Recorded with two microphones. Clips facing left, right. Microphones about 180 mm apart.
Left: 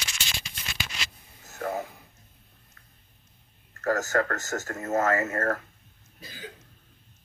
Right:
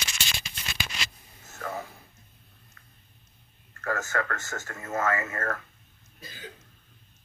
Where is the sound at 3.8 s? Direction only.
40° left (ahead or behind).